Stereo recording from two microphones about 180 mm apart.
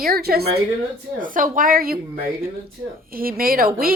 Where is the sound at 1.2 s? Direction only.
50° right (ahead or behind).